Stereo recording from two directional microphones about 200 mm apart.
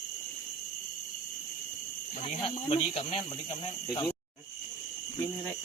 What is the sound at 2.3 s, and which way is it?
Speech, 30° left (ahead or behind).